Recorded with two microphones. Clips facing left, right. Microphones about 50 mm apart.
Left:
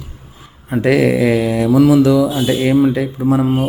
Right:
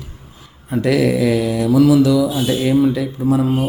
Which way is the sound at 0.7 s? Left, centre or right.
Left.